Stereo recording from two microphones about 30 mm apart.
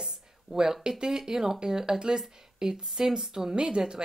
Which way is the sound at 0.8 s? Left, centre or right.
Right.